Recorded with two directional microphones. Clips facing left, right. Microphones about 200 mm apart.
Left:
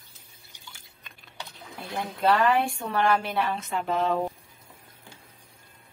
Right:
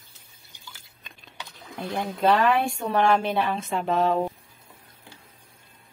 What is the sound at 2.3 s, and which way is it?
A woman's voice, 20° right (ahead or behind).